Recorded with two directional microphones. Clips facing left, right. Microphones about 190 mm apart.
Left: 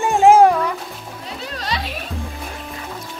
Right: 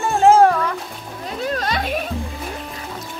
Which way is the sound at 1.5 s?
50° right (ahead or behind).